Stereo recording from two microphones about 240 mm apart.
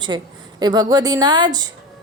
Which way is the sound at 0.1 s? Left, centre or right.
Centre.